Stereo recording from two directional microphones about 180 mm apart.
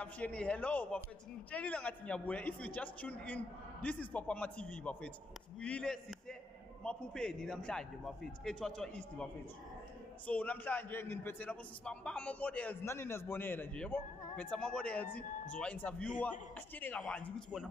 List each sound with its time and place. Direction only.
0.0 s a man's voice: 5° left (ahead or behind)